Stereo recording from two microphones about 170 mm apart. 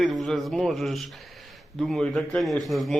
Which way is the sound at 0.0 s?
Centre (ahead or behind).